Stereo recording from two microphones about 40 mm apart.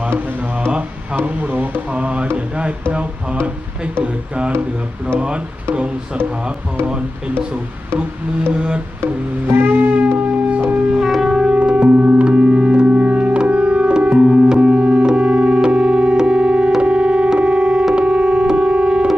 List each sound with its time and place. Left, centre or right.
1.2 s speech: right
1.9 s speech: right
4.0 s speech: right
6.8 s speech: right
8.5 s speech: right
9.6 s music: right
10.2 s wind instrument: right
11.0 s wind instrument: centre
11.3 s music: centre
11.9 s music: right
12.2 s music: right